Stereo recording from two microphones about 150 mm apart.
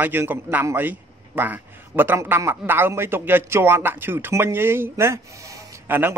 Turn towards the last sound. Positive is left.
turn(degrees=-15)  # may be behind; listen again after turning